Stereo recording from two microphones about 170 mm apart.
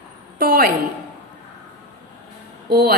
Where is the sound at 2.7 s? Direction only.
60° right (ahead or behind).